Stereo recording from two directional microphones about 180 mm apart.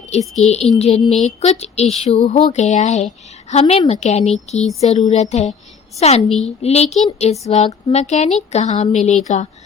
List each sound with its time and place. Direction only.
0.1 s a woman's voice: 35° left (ahead or behind)
6.2 s a woman's voice: centre (ahead or behind)
6.6 s a woman's voice: 35° left (ahead or behind)